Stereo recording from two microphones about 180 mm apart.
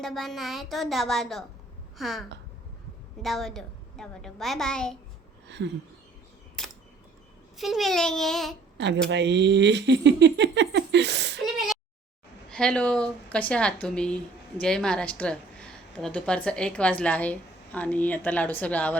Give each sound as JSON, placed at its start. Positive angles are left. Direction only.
{"t": 0.0, "sound": "a woman's voice", "side_deg": 0}
{"t": 5.5, "sound": "a sound", "side_deg": -75}
{"t": 7.5, "sound": "a woman's voice", "side_deg": 0}
{"t": 9.0, "sound": "speech", "side_deg": -75}
{"t": 12.5, "sound": "a woman's voice", "side_deg": 5}